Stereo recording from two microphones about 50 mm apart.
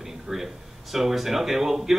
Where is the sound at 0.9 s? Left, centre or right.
Centre.